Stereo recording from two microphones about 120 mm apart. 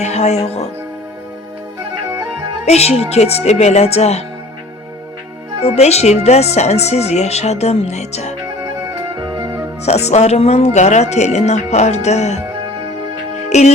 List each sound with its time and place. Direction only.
0.0 s speech: 65° left (ahead or behind)
2.6 s speech: 65° left (ahead or behind)
5.6 s speech: 65° left (ahead or behind)
8.9 s music: 30° right (ahead or behind)
9.8 s speech: 65° left (ahead or behind)
13.5 s speech: 70° left (ahead or behind)